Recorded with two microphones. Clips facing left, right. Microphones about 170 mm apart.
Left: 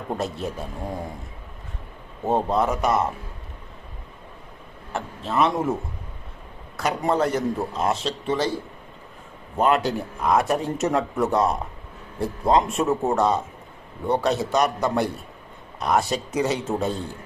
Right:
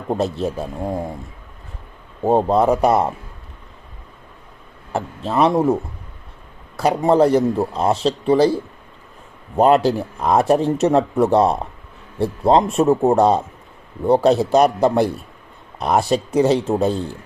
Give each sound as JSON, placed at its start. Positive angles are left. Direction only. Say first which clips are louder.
{"t": 0.1, "sound": "speech", "louder": "right 7 dB", "side_deg": -30}
{"t": 2.2, "sound": "a man's voice", "louder": "right 6 dB", "side_deg": -35}
{"t": 4.9, "sound": "a man's voice", "louder": "right 5 dB", "side_deg": -35}
{"t": 6.7, "sound": "a man's voice", "louder": "right 8 dB", "side_deg": -30}
{"t": 9.6, "sound": "a man's voice", "louder": "right 7 dB", "side_deg": -35}